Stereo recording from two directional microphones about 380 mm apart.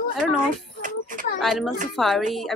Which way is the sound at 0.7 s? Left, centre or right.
Centre.